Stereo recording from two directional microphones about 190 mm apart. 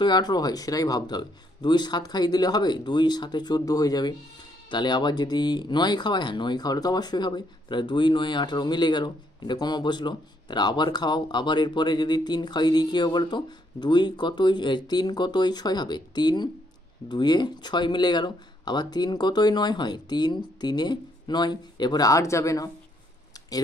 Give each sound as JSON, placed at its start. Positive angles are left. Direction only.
{"t": 0.0, "sound": "speech", "side_deg": 20}